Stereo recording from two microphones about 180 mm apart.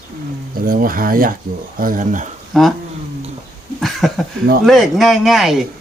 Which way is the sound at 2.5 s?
Centre (ahead or behind).